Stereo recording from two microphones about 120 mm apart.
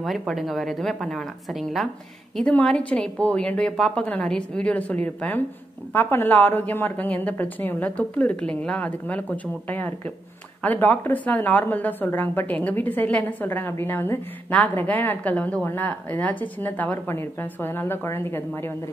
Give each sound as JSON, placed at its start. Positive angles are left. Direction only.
{"t": 0.3, "sound": "a woman's voice", "side_deg": 0}